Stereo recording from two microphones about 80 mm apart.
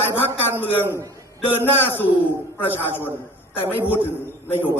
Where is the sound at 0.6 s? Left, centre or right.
Left.